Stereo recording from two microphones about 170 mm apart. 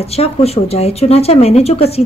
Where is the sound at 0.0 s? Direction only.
35° left (ahead or behind).